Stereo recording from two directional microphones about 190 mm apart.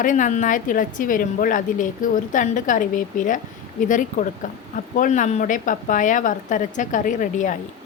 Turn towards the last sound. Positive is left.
turn(degrees=45)  # may be behind; listen again after turning